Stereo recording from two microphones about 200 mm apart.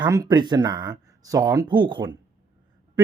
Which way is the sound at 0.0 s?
20° right (ahead or behind).